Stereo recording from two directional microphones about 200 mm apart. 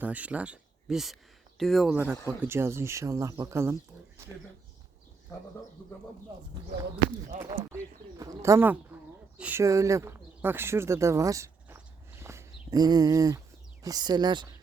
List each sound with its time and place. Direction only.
0.0 s speech: 5° right (ahead or behind)
8.2 s speech: 15° right (ahead or behind)
12.2 s a sound: 15° right (ahead or behind)
13.8 s speech: 20° right (ahead or behind)